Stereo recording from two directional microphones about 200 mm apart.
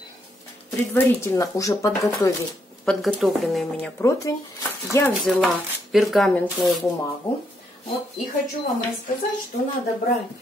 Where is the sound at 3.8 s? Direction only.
15° left (ahead or behind).